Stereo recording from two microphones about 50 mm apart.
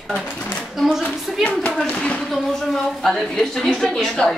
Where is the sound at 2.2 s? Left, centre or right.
Centre.